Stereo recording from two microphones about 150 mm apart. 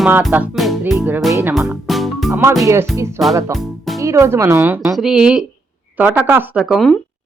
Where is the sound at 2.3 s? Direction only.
20° right (ahead or behind).